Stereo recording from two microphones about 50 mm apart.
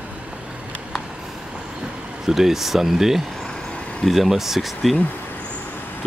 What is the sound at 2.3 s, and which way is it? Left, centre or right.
Speech, centre.